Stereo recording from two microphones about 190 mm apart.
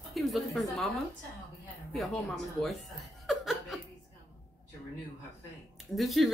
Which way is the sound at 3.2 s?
Centre (ahead or behind).